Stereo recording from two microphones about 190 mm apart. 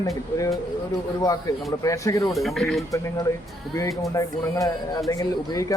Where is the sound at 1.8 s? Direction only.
15° left (ahead or behind).